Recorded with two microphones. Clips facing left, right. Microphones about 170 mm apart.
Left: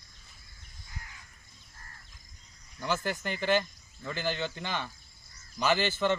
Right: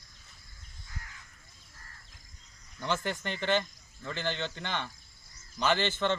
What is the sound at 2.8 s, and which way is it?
Speech, 5° left (ahead or behind).